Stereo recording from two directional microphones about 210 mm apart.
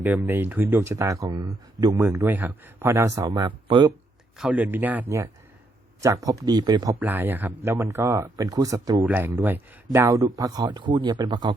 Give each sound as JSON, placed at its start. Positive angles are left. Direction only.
{"t": 0.0, "sound": "speech", "side_deg": -10}
{"t": 4.4, "sound": "speech", "side_deg": -5}